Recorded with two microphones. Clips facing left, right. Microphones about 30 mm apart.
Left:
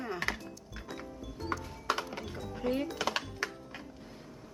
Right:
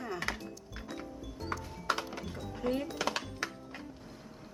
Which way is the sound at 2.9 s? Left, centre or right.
Centre.